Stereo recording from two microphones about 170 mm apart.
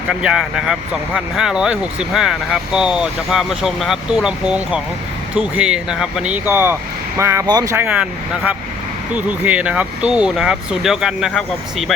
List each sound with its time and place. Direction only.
0.1 s speech: 5° right (ahead or behind)
9.1 s speech: 10° right (ahead or behind)